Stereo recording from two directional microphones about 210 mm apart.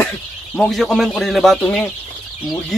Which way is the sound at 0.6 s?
Centre (ahead or behind).